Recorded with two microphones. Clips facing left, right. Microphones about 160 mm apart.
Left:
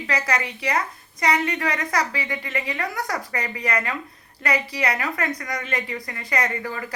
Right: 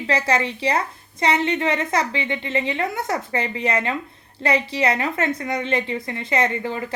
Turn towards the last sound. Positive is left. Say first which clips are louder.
# right 4 dB
turn(degrees=-25)  # may be behind; listen again after turning